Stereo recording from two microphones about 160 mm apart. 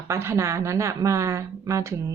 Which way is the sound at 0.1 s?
15° right (ahead or behind).